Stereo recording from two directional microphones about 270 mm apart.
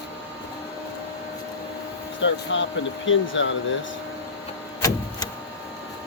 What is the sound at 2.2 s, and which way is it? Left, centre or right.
Speech, left.